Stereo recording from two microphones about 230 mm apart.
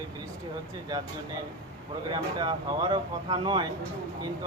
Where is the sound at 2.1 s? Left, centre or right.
Centre.